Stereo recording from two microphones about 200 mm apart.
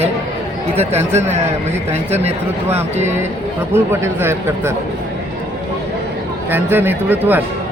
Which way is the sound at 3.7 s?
10° right (ahead or behind).